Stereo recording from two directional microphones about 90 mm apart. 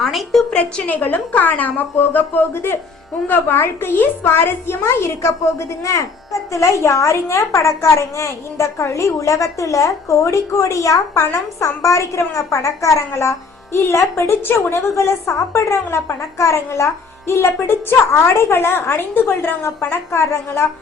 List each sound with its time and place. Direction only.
0.0 s a woman's voice: centre (ahead or behind)
0.5 s a woman's voice: 20° left (ahead or behind)